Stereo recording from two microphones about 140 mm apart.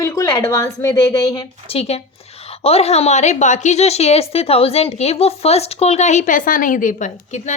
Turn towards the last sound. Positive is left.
turn(degrees=60)  # may be behind; listen again after turning